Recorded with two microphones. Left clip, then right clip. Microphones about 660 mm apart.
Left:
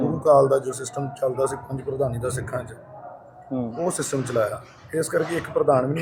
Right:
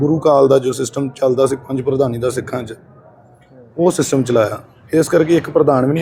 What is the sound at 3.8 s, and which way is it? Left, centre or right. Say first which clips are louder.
Speech: right 13 dB; right.